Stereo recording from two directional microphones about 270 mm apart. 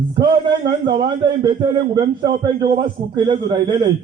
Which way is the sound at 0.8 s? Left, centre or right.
Centre.